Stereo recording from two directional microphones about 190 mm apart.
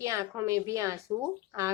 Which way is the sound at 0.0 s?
15° right (ahead or behind).